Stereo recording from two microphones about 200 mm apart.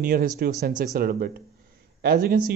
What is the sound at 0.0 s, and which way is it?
Speech, 45° right (ahead or behind).